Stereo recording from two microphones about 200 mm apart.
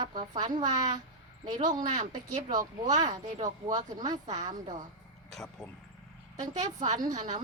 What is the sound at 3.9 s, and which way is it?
Speech, 20° right (ahead or behind).